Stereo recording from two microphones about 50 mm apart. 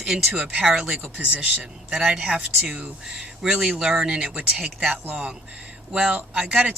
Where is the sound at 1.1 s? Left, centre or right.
Right.